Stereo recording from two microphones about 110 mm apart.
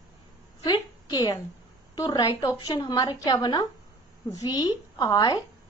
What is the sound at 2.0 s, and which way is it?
Speech, 35° left (ahead or behind).